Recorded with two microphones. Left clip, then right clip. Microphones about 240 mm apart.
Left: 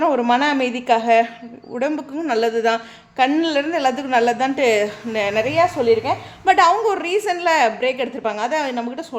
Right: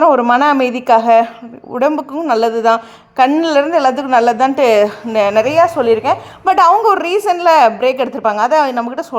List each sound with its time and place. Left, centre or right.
0.0 s a woman's voice: centre